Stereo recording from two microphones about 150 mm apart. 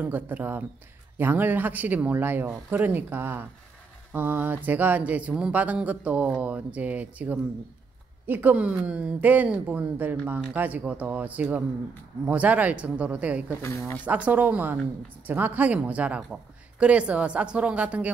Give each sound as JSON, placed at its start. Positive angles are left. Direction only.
{"t": 0.0, "sound": "speech", "side_deg": -10}
{"t": 13.6, "sound": "speech", "side_deg": 15}
{"t": 14.0, "sound": "speech", "side_deg": -10}